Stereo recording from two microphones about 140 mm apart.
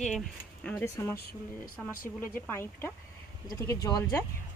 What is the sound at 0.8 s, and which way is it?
Speech, 20° left (ahead or behind).